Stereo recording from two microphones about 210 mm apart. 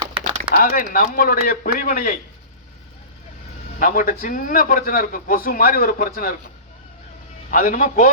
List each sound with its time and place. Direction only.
0.0 s typing: 25° right (ahead or behind)
0.5 s a man's voice: 40° left (ahead or behind)
3.8 s a man's voice: 40° left (ahead or behind)
7.5 s a man's voice: 40° left (ahead or behind)